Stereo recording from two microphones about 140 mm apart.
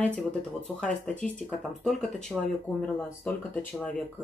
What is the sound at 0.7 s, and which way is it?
Speech, 5° left (ahead or behind).